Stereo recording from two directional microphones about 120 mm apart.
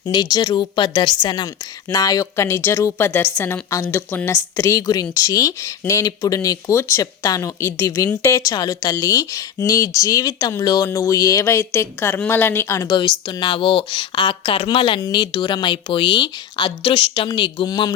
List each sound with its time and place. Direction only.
0.0 s speech: 35° left (ahead or behind)
8.4 s speech: 35° left (ahead or behind)
13.0 s a woman's voice: 40° left (ahead or behind)
15.0 s speech: 35° left (ahead or behind)